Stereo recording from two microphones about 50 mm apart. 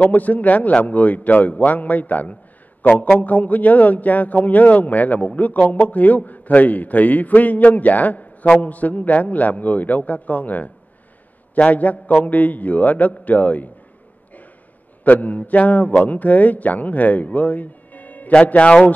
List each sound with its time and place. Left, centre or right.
0.0 s a man's voice: left
11.7 s a man's voice: left
15.0 s a man's voice: left